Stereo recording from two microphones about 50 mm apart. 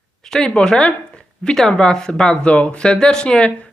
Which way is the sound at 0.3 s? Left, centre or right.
Centre.